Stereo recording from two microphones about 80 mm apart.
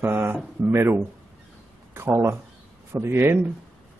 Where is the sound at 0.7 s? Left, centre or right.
Right.